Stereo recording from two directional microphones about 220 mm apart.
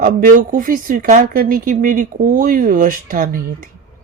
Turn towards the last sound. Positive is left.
turn(degrees=-40)  # may be behind; listen again after turning